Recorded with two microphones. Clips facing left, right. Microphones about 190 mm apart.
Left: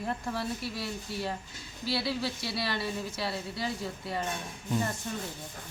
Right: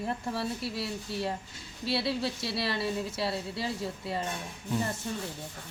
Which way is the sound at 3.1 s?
Centre (ahead or behind).